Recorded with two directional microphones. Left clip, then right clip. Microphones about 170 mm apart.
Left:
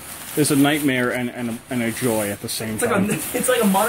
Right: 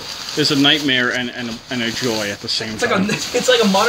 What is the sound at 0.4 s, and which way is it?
Speech, 30° left (ahead or behind).